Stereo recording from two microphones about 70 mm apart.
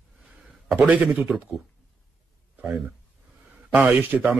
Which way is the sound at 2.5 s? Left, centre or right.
Right.